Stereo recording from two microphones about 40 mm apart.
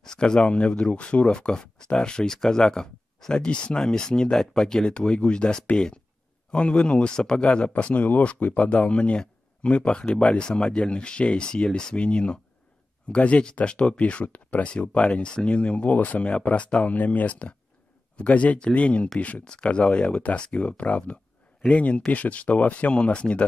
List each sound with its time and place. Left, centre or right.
0.0 s speech: centre
15.9 s speech: left
16.9 s speech: left
19.4 s speech: left